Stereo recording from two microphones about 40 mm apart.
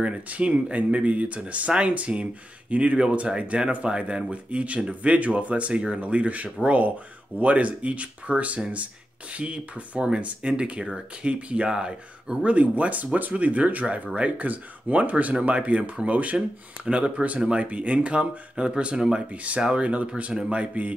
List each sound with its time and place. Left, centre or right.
0.0 s speech: right
12.4 s speech: right
16.3 s speech: right